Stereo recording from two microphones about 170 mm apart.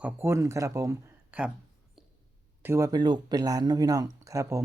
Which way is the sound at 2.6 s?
20° right (ahead or behind).